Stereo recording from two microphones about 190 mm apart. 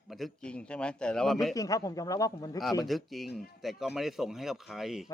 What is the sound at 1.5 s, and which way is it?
A man's voice, 15° left (ahead or behind).